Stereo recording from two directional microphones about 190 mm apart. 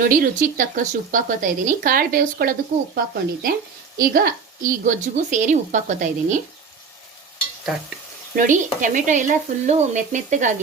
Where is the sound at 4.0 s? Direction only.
50° right (ahead or behind).